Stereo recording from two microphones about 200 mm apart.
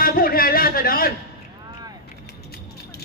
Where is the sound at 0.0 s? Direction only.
45° left (ahead or behind).